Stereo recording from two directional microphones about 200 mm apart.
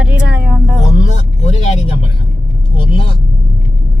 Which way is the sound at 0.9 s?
35° left (ahead or behind).